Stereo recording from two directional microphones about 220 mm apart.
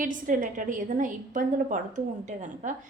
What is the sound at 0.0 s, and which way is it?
A woman's voice, 35° right (ahead or behind).